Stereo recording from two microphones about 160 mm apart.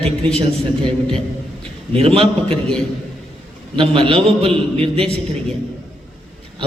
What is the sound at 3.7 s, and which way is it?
A man's voice, 35° right (ahead or behind).